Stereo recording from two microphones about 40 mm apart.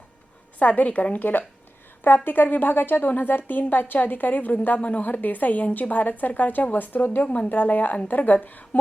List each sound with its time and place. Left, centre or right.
0.6 s a woman's voice: left
4.8 s a woman's voice: left
7.3 s speech: left
7.5 s a woman's voice: left